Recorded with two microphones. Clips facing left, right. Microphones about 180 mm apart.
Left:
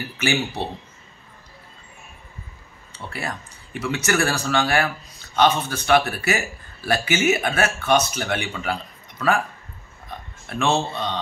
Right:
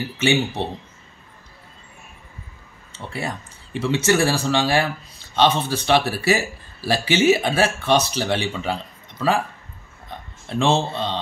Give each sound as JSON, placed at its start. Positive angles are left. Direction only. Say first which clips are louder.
{"t": 0.0, "sound": "speech", "louder": "right 4 dB", "side_deg": -25}
{"t": 2.9, "sound": "speech", "louder": "right 2 dB", "side_deg": -25}
{"t": 10.4, "sound": "speech", "louder": "right 2 dB", "side_deg": -25}